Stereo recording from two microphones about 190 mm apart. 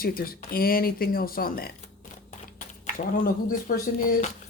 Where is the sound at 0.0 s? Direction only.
50° left (ahead or behind).